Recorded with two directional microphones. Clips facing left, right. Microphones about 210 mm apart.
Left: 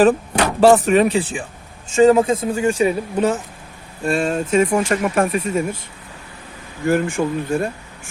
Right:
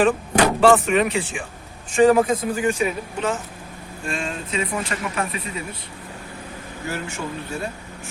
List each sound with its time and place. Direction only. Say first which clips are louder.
0.6 s speech: left 6 dB; 40° left (ahead or behind)
1.9 s a man's voice: left 3 dB; 25° left (ahead or behind); by 5.6 s 45° left (ahead or behind)
6.8 s speech: left 12 dB; 50° left (ahead or behind)